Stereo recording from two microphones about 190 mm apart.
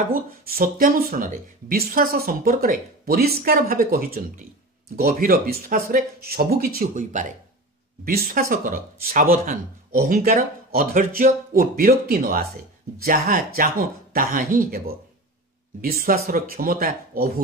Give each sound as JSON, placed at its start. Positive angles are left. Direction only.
{"t": 0.1, "sound": "speech", "side_deg": -50}